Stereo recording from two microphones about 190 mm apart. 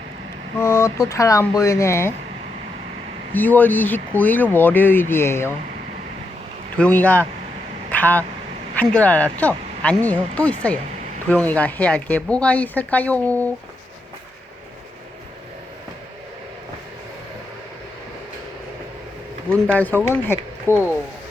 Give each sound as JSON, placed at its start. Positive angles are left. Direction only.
{"t": 0.6, "sound": "speech", "side_deg": 15}
{"t": 3.3, "sound": "speech", "side_deg": 10}
{"t": 6.7, "sound": "speech", "side_deg": 5}
{"t": 7.9, "sound": "vehicle", "side_deg": 10}
{"t": 8.7, "sound": "speech", "side_deg": 5}
{"t": 19.6, "sound": "speech", "side_deg": 10}